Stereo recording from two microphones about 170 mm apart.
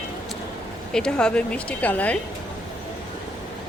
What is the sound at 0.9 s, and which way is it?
Speech, 5° left (ahead or behind).